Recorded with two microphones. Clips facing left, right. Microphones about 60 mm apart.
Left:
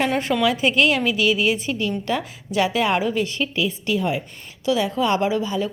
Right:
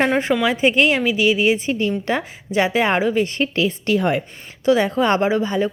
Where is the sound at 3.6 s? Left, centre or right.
Right.